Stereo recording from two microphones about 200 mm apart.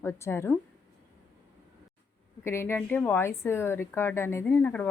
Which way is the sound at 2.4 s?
15° left (ahead or behind).